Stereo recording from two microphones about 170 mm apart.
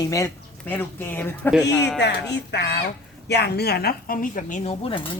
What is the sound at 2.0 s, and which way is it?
Speech, 85° left.